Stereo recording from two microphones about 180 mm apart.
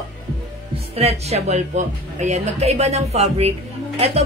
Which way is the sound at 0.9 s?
35° right (ahead or behind).